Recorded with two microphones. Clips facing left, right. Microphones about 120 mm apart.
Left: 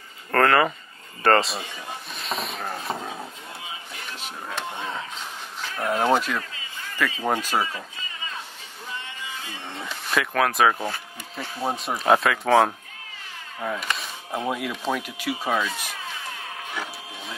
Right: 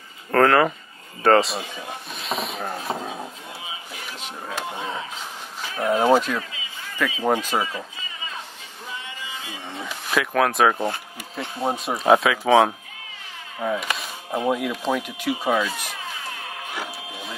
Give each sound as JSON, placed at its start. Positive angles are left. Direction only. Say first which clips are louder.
{"t": 0.3, "sound": "speech", "louder": "right 2 dB", "side_deg": 0}
{"t": 2.1, "sound": "a sound", "louder": "right 3 dB", "side_deg": 0}
{"t": 5.6, "sound": "speech", "louder": "right 3 dB", "side_deg": -10}
{"t": 9.5, "sound": "speech", "louder": "right 2 dB", "side_deg": 0}
{"t": 16.7, "sound": "printer", "louder": "right 1 dB", "side_deg": 0}